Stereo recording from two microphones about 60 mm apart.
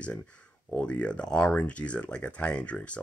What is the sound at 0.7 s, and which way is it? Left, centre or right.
Speech, centre.